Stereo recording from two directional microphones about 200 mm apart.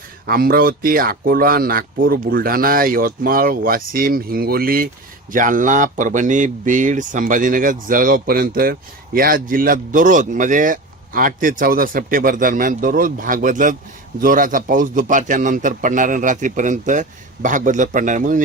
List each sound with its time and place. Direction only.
0.3 s a man's voice: 45° right (ahead or behind)